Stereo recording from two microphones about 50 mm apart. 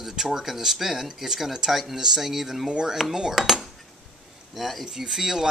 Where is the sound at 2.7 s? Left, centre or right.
Centre.